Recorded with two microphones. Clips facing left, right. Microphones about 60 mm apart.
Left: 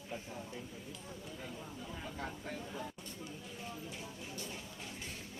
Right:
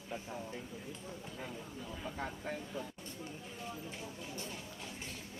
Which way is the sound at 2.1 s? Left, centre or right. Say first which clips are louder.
Right 3 dB; right.